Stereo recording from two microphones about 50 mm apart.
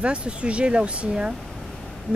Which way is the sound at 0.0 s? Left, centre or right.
Right.